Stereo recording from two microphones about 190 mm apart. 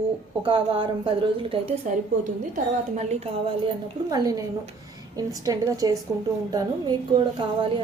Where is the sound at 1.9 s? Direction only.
40° right (ahead or behind).